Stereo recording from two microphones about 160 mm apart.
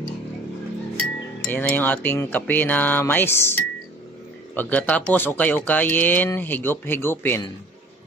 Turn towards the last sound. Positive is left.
turn(degrees=15)  # may be behind; listen again after turning